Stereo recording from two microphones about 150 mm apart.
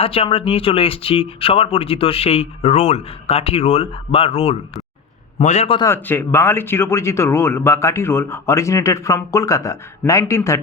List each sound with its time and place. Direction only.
0.0 s a man's voice: 40° left (ahead or behind)
5.8 s speech: 15° left (ahead or behind)